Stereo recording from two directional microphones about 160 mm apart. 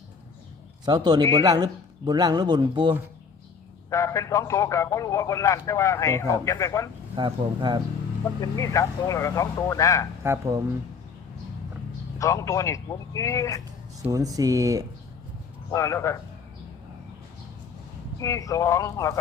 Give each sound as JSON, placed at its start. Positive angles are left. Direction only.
{"t": 0.9, "sound": "speech", "side_deg": -25}
{"t": 3.8, "sound": "a man's voice", "side_deg": 20}
{"t": 7.2, "sound": "speech", "side_deg": -30}
{"t": 8.4, "sound": "a man's voice", "side_deg": 20}
{"t": 10.2, "sound": "speech", "side_deg": -20}
{"t": 12.2, "sound": "a man's voice", "side_deg": 20}
{"t": 14.0, "sound": "speech", "side_deg": -20}
{"t": 15.7, "sound": "a man's voice", "side_deg": 20}
{"t": 18.2, "sound": "a man's voice", "side_deg": 20}